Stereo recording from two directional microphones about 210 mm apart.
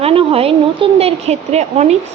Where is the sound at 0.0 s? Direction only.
25° right (ahead or behind).